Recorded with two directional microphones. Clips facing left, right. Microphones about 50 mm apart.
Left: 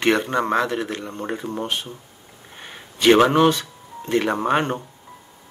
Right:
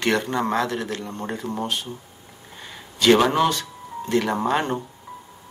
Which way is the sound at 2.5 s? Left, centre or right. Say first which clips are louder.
Even; left.